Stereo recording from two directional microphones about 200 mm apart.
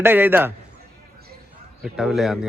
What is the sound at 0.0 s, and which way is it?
Speech, 10° right (ahead or behind).